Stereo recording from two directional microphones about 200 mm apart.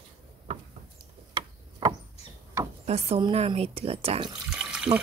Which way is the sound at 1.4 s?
20° right (ahead or behind).